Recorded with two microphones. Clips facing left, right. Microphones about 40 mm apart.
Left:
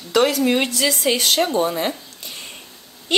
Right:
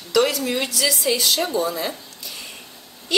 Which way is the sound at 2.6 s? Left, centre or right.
Centre.